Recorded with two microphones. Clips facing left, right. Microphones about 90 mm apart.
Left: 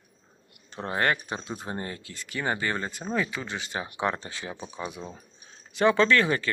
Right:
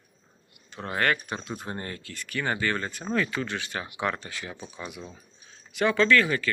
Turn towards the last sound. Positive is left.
turn(degrees=30)  # may be behind; listen again after turning